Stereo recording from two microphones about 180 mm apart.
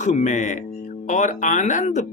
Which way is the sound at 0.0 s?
40° left (ahead or behind).